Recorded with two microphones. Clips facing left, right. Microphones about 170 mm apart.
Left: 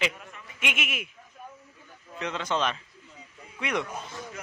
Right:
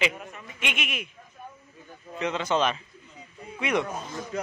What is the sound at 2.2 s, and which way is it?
Speech, 5° right (ahead or behind).